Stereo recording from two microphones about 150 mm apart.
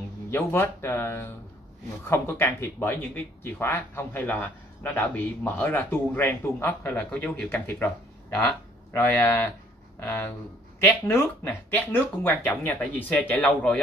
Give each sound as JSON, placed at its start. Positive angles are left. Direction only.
{"t": 0.3, "sound": "a man's voice", "side_deg": 15}
{"t": 10.8, "sound": "a man's voice", "side_deg": 15}